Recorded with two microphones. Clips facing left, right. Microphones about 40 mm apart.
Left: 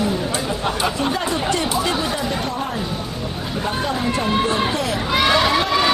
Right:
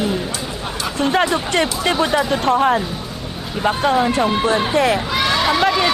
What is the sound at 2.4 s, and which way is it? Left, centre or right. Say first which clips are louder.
Speech: right 9 dB; right.